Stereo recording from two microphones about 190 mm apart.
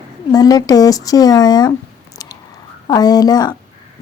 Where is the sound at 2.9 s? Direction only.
20° left (ahead or behind).